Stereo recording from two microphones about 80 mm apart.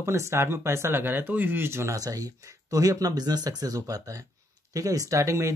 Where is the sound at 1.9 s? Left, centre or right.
Right.